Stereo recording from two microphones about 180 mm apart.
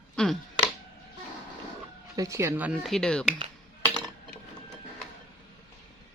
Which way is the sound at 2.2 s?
15° right (ahead or behind).